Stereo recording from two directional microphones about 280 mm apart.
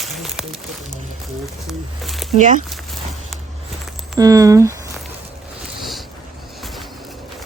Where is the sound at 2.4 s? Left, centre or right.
Right.